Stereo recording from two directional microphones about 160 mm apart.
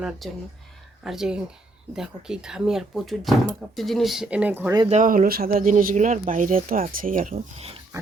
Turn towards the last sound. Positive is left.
turn(degrees=-60)  # may be behind; listen again after turning